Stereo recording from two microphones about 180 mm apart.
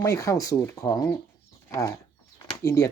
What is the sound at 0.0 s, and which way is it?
Speech, 15° left (ahead or behind).